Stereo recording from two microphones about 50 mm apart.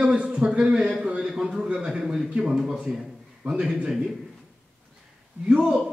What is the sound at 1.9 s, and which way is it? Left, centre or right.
Speech, centre.